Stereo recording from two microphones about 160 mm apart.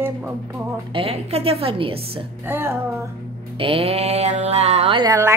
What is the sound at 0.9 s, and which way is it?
A woman's voice, 35° right (ahead or behind).